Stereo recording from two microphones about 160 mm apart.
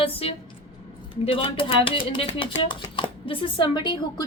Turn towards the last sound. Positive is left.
turn(degrees=30)  # may be behind; listen again after turning